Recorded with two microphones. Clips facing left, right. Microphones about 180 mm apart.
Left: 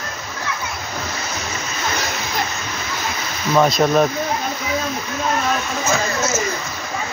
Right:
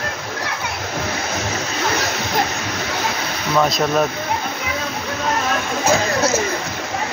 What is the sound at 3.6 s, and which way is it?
Speech, centre (ahead or behind).